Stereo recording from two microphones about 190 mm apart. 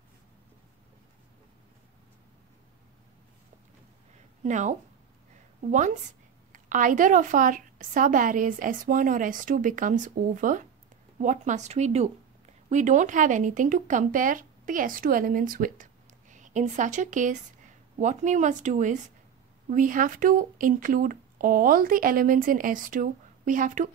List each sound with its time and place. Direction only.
4.4 s a woman's voice: 40° right (ahead or behind)